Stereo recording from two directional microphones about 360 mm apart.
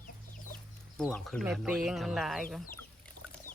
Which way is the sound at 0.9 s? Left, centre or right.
Centre.